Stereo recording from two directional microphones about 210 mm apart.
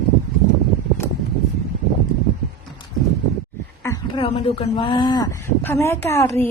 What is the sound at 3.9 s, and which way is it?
Speech, 25° left (ahead or behind).